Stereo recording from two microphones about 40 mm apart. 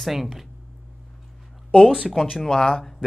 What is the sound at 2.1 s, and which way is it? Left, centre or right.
Speech, centre.